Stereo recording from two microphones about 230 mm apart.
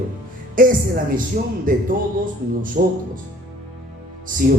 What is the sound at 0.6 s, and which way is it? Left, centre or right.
Speech, right.